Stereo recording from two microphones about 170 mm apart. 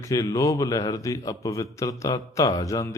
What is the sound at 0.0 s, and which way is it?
A man's voice, 20° left (ahead or behind).